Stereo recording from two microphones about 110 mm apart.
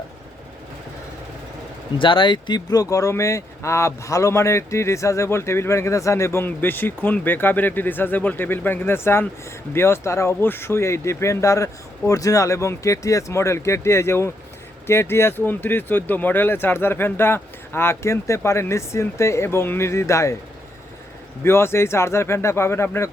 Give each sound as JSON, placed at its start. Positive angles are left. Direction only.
{"t": 2.0, "sound": "speech", "side_deg": 50}
{"t": 21.4, "sound": "speech", "side_deg": 25}